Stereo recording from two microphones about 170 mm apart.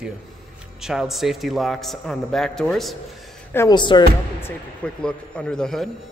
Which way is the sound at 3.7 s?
25° left (ahead or behind).